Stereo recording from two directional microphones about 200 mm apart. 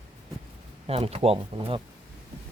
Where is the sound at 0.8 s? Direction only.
30° right (ahead or behind).